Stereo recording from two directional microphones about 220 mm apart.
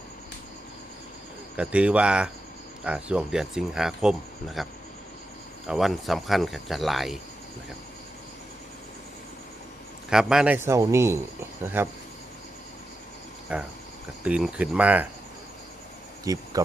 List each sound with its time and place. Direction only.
1.5 s speech: 5° right (ahead or behind)
10.1 s a man's voice: 5° right (ahead or behind)
13.5 s speech: 5° right (ahead or behind)
16.2 s speech: 15° right (ahead or behind)